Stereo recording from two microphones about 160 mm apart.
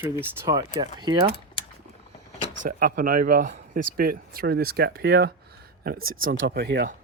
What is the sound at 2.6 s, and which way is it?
Speech, 60° right (ahead or behind).